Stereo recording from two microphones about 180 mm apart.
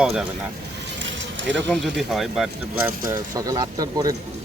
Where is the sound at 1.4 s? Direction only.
90° right.